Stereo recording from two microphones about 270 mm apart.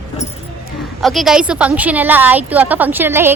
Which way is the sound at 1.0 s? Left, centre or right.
Centre.